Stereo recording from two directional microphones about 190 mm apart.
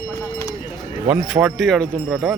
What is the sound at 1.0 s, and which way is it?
Speech, 5° right (ahead or behind).